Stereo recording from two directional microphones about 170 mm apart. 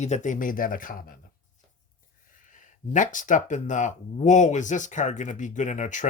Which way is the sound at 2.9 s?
50° left (ahead or behind).